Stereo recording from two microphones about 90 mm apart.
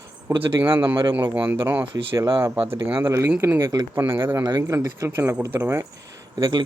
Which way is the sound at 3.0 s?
35° right (ahead or behind).